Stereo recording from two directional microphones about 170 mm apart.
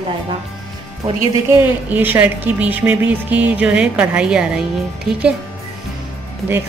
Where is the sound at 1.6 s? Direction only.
10° right (ahead or behind).